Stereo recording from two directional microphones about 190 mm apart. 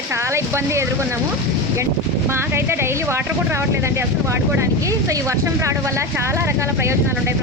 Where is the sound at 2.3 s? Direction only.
15° right (ahead or behind).